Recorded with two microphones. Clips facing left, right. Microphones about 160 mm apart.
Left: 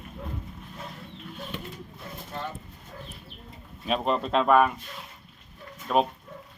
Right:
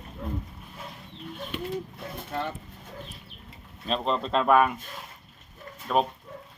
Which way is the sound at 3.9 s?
5° left (ahead or behind).